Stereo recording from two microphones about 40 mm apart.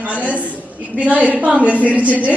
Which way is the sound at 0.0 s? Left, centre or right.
Right.